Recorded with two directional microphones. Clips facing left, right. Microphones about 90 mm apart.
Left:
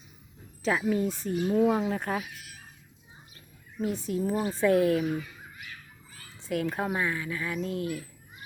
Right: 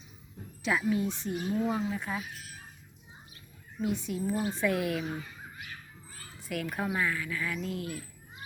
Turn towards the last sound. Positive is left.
turn(degrees=30)  # may be behind; listen again after turning